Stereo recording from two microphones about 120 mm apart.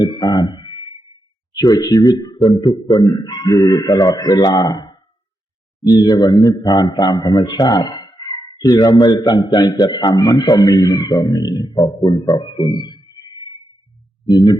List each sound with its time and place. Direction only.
0.0 s a sound: 35° left (ahead or behind)
1.5 s speech: 30° left (ahead or behind)
14.3 s speech: 35° left (ahead or behind)